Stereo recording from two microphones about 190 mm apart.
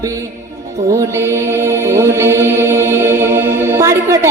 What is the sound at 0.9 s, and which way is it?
Chant, 15° right (ahead or behind).